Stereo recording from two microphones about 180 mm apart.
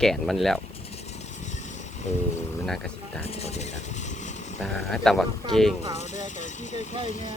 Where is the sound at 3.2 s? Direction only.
35° left (ahead or behind).